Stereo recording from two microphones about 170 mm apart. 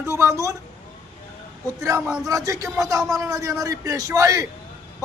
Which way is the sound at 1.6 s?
20° right (ahead or behind).